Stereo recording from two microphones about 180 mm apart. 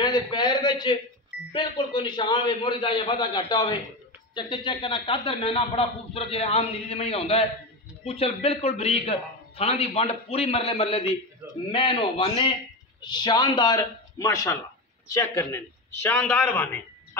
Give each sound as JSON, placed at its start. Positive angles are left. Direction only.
{"t": 0.0, "sound": "a man's voice", "side_deg": 25}